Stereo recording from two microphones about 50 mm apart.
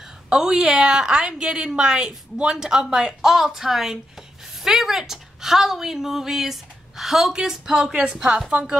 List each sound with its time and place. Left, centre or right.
0.3 s a woman's voice: centre